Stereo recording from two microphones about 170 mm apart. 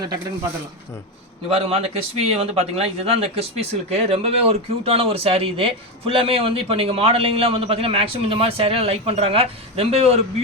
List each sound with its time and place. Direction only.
1.5 s speech: 35° right (ahead or behind)